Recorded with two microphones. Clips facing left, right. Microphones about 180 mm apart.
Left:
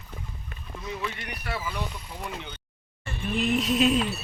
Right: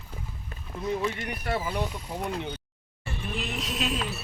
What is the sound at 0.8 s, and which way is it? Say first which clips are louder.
Speech: right 6 dB; 45° right (ahead or behind).